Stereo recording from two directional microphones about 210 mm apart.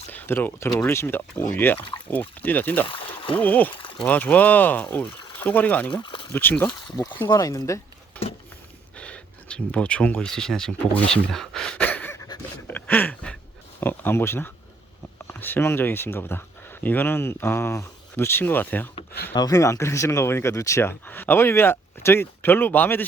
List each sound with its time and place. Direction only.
0.1 s speech: 10° left (ahead or behind)
3.8 s a sound: 25° left (ahead or behind)
4.0 s speech: 5° left (ahead or behind)
5.9 s speech: 25° left (ahead or behind)
6.3 s speech: 10° left (ahead or behind)
6.7 s speech: 20° left (ahead or behind)
9.0 s speech: 5° left (ahead or behind)
11.1 s a sound: centre (ahead or behind)
13.8 s speech: 10° left (ahead or behind)